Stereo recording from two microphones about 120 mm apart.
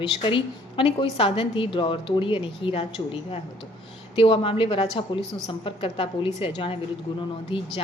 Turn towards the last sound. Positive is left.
turn(degrees=50)  # may be behind; listen again after turning